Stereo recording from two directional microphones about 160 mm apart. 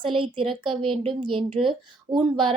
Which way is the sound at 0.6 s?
35° right (ahead or behind).